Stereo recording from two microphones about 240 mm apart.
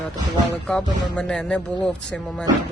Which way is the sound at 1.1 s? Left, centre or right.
Centre.